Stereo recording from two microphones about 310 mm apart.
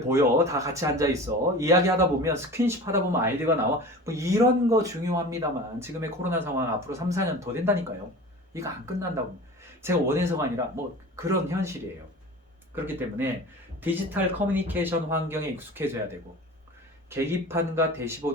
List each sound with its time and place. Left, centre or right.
0.1 s speech: centre
12.7 s speech: centre